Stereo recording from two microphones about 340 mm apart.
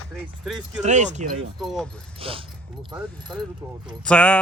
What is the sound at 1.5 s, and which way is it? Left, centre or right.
Speech, centre.